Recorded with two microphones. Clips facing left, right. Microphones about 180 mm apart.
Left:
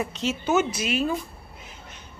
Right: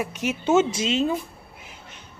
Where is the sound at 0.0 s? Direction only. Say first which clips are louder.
Right 1 dB; 10° right (ahead or behind).